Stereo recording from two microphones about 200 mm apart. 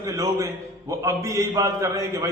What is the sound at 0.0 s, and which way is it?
A man's voice, 15° right (ahead or behind).